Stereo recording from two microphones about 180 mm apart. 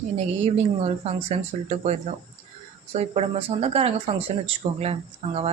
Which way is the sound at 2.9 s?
35° right (ahead or behind).